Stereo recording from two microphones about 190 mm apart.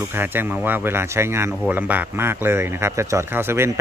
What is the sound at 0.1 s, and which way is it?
Speech, 10° right (ahead or behind).